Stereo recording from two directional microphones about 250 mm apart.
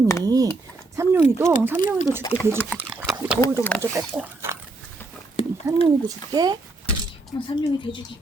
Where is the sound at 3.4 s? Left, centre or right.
Centre.